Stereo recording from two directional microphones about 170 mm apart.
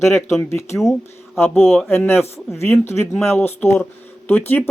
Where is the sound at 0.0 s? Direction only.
15° left (ahead or behind).